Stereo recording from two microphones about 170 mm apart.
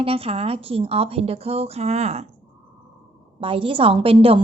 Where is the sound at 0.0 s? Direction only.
35° right (ahead or behind).